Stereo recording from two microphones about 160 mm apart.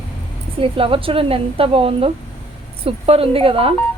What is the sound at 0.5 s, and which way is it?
A woman's voice, 35° right (ahead or behind).